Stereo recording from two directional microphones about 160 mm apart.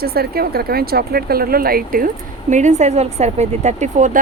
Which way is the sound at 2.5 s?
50° right (ahead or behind).